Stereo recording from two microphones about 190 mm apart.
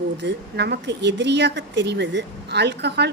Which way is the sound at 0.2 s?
65° right (ahead or behind).